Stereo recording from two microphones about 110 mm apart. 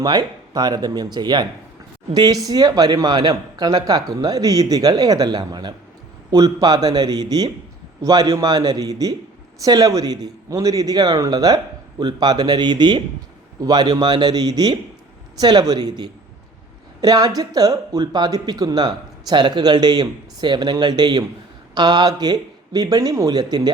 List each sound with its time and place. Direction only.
0.0 s speech: 40° right (ahead or behind)